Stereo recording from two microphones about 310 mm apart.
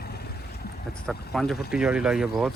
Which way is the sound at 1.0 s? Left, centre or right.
Centre.